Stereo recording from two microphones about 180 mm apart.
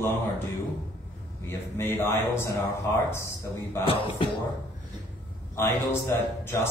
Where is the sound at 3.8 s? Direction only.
30° left (ahead or behind).